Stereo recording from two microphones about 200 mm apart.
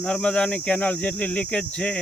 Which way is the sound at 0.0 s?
5° left (ahead or behind).